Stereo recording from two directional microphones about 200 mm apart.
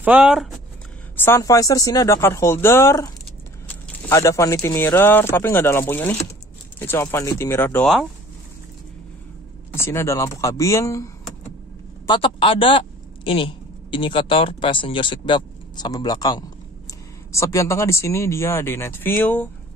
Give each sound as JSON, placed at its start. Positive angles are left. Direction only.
{"t": 0.0, "sound": "speech", "side_deg": -5}
{"t": 1.1, "sound": "speech", "side_deg": 10}
{"t": 9.8, "sound": "speech", "side_deg": 15}
{"t": 12.1, "sound": "speech", "side_deg": 25}